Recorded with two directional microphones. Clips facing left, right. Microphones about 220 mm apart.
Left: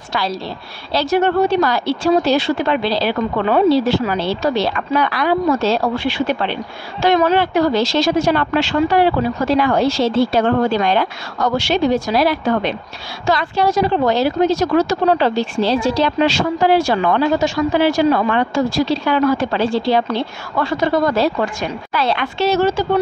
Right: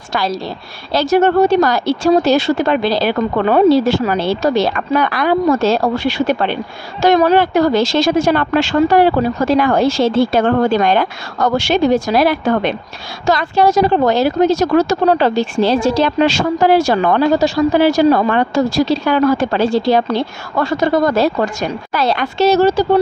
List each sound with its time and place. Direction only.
0.1 s speech: 45° right (ahead or behind)